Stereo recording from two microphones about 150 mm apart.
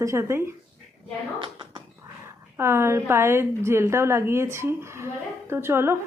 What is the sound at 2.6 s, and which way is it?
Speech, 15° right (ahead or behind).